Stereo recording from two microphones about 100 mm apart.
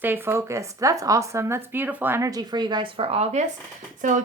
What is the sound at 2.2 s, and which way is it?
Speech, 40° right (ahead or behind).